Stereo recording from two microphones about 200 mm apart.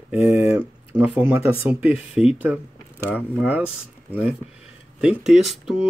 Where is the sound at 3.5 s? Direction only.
5° right (ahead or behind).